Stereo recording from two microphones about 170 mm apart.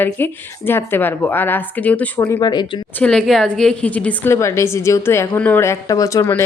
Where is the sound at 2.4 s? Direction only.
25° left (ahead or behind).